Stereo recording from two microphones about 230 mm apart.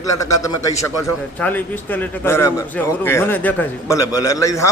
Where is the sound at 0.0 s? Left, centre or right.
Centre.